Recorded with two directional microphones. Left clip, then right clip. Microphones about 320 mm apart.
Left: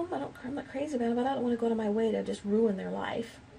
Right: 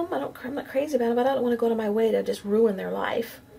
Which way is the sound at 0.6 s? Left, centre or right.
Centre.